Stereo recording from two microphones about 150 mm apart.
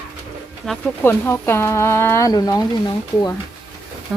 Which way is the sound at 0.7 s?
5° left (ahead or behind).